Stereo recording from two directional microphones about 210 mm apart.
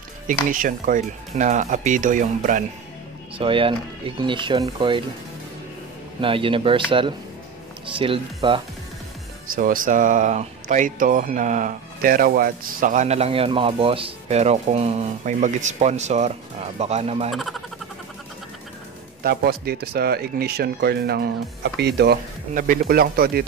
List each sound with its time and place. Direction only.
0.3 s speech: 40° right (ahead or behind)
3.3 s speech: 25° right (ahead or behind)
6.2 s speech: 25° right (ahead or behind)
9.6 s speech: 40° right (ahead or behind)
17.3 s speech: centre (ahead or behind)
19.2 s speech: 45° right (ahead or behind)